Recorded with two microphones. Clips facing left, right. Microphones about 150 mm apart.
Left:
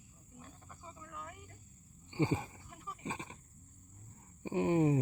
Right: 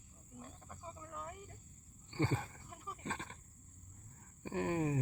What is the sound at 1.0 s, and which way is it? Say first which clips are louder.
Cricket: right 1 dB; 35° right (ahead or behind).